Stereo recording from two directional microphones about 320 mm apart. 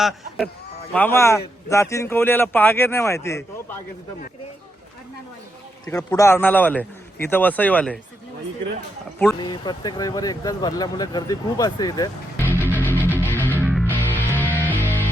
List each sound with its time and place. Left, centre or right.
0.0 s speech: centre
5.9 s speech: centre
9.4 s speech: centre
13.2 s music: centre
13.6 s music: centre
13.9 s music: centre